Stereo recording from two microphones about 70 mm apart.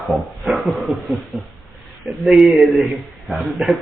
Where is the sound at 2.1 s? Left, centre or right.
Centre.